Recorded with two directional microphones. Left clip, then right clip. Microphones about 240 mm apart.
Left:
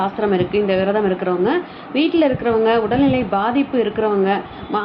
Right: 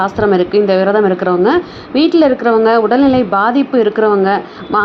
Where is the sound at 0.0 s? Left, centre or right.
Right.